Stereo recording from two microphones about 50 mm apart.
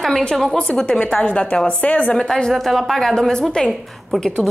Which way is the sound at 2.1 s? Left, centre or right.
Centre.